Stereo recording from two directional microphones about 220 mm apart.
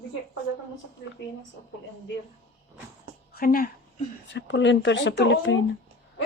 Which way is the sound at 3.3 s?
40° left (ahead or behind).